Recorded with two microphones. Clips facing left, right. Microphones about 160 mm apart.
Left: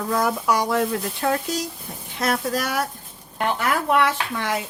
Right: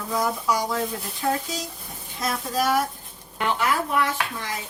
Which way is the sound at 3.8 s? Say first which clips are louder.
Left 4 dB; 75° left (ahead or behind).